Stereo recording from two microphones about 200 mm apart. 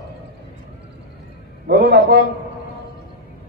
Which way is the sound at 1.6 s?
55° right (ahead or behind).